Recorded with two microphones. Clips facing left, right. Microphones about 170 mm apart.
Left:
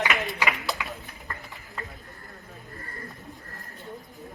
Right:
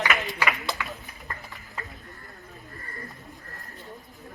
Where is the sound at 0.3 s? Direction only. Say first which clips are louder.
Even; 20° left (ahead or behind).